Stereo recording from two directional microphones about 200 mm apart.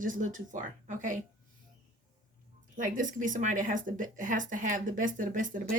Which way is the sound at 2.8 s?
40° right (ahead or behind).